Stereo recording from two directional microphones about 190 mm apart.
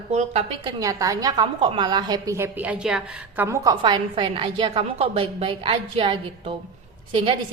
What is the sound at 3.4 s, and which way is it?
A woman's voice, 20° right (ahead or behind).